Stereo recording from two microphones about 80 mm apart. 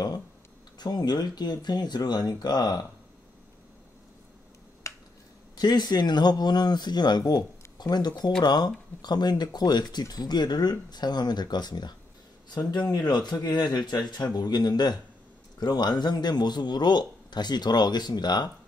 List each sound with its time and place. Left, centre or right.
0.7 s speech: left
4.9 s finger snapping: left
5.6 s speech: left